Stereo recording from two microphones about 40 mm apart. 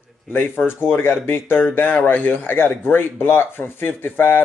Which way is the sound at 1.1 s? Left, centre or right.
Left.